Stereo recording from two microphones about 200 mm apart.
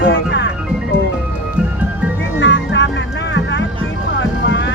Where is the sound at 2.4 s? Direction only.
65° left (ahead or behind).